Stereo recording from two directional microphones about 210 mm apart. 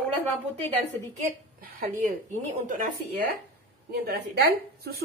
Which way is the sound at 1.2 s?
45° right (ahead or behind).